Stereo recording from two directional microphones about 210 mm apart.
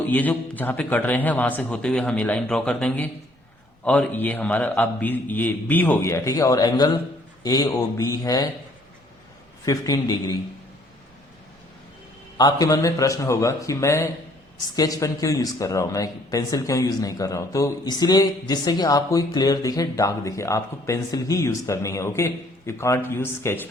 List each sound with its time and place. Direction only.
0.0 s speech: 10° left (ahead or behind)
9.6 s speech: 15° left (ahead or behind)
12.4 s speech: 15° left (ahead or behind)